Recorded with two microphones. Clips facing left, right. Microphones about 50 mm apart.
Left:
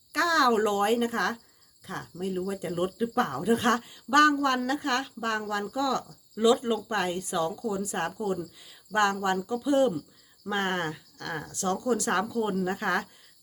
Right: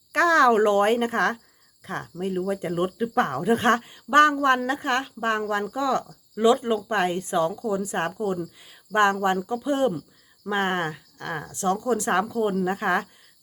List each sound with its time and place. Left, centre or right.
0.1 s speech: right